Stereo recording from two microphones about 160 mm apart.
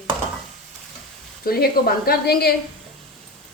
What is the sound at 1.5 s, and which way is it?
A woman's voice, 75° left (ahead or behind).